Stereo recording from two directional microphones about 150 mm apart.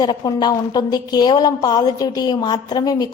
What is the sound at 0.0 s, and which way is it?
A woman's voice, 30° left (ahead or behind).